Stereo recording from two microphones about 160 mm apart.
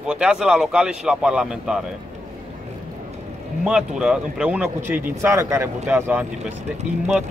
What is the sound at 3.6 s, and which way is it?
A man's voice, 5° right (ahead or behind).